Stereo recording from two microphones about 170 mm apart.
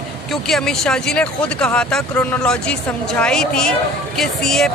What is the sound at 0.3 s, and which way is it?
Speech, 5° left (ahead or behind).